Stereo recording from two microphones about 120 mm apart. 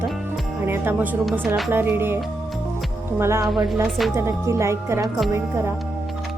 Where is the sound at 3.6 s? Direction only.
Centre (ahead or behind).